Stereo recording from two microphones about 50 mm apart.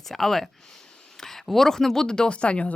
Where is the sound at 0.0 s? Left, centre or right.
Centre.